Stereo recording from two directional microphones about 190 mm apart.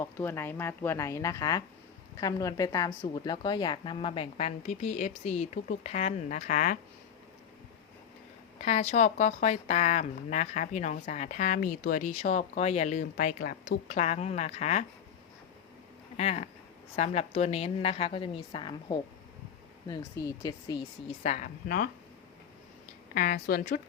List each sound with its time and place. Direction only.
0.0 s speech: 10° left (ahead or behind); by 6.7 s 40° left (ahead or behind)
8.6 s speech: 35° left (ahead or behind)
16.1 s speech: 35° left (ahead or behind)
21.2 s speech: 40° left (ahead or behind)
23.1 s speech: 50° left (ahead or behind)